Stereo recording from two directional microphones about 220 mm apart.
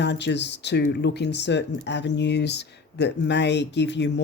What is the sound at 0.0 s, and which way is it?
Speech, 50° left (ahead or behind).